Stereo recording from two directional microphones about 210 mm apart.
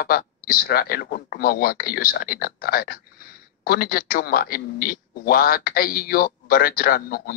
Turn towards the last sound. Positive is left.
turn(degrees=45)  # may be behind; listen again after turning